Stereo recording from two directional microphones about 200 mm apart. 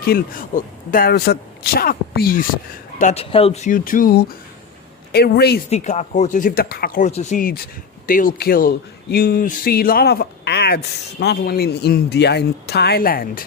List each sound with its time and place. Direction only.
0.0 s speech: 50° left (ahead or behind)
3.0 s speech: 35° left (ahead or behind); by 5.5 s 55° left (ahead or behind)
5.7 s speech: 35° left (ahead or behind)